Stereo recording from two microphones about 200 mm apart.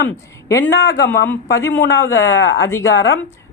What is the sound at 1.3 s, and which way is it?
Speech, 15° left (ahead or behind).